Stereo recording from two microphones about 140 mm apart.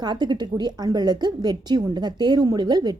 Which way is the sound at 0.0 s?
30° right (ahead or behind).